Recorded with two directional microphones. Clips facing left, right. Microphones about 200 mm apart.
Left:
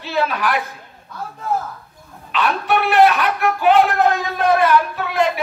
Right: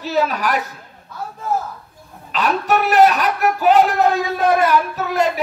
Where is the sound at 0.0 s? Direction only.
40° right (ahead or behind).